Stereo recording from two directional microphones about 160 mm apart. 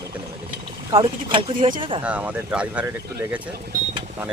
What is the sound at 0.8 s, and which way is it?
Speech, 25° right (ahead or behind).